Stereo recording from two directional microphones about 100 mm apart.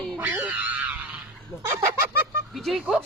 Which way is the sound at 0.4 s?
15° right (ahead or behind).